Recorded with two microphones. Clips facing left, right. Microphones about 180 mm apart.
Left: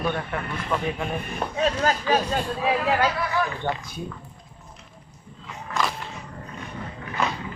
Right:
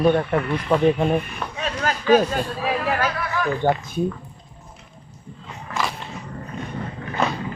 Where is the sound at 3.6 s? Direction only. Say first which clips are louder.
Right 8 dB; 40° right (ahead or behind).